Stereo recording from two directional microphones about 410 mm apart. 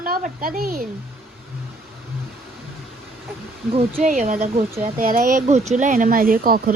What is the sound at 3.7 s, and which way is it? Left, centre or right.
Speech, centre.